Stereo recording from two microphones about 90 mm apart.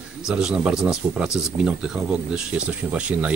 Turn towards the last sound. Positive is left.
turn(degrees=-15)  # may be behind; listen again after turning